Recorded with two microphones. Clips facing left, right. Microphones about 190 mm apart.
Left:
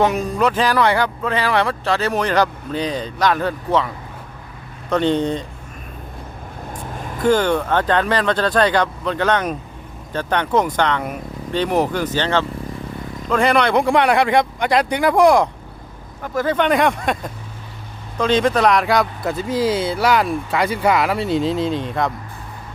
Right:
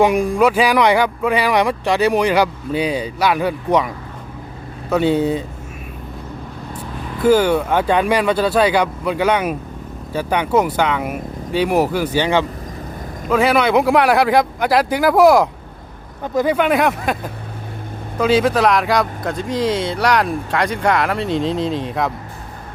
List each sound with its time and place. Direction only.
0.0 s speech: 10° right (ahead or behind)
7.2 s speech: 5° right (ahead or behind)
16.2 s speech: 15° right (ahead or behind); by 22.1 s centre (ahead or behind)